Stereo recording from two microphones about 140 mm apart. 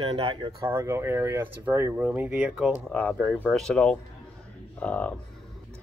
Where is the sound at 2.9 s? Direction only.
10° left (ahead or behind).